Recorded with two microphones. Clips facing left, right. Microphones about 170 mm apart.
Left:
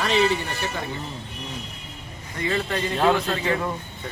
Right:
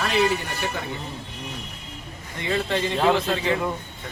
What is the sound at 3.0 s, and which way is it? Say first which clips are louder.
Speech: left 1 dB; 10° right (ahead or behind).